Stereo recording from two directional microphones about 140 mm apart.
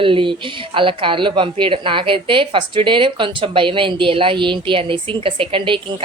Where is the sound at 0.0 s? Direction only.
35° right (ahead or behind).